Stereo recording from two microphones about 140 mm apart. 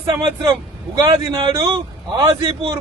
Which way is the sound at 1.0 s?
30° right (ahead or behind).